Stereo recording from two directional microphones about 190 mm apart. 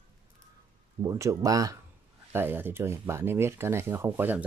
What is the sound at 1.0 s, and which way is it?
Speech, 15° right (ahead or behind).